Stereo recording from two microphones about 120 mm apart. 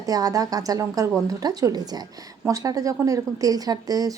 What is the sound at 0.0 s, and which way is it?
A woman's voice, 30° right (ahead or behind).